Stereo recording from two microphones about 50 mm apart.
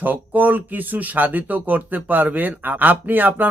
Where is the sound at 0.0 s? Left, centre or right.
Right.